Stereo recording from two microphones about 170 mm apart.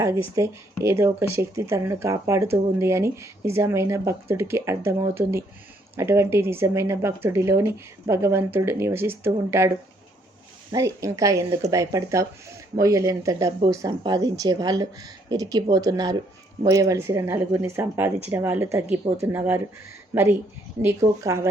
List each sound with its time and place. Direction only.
0.0 s speech: 15° right (ahead or behind)
21.0 s speech: 25° right (ahead or behind)